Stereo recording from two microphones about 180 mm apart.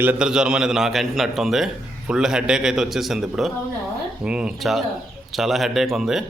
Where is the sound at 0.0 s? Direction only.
5° right (ahead or behind).